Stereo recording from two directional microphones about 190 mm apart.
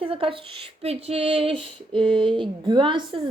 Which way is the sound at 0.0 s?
30° right (ahead or behind).